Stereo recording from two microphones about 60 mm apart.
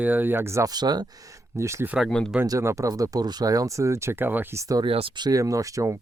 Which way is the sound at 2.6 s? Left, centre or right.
Right.